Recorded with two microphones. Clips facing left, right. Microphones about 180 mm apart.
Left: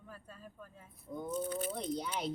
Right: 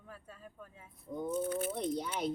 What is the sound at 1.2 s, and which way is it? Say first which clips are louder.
Speech: right 3 dB; 10° right (ahead or behind).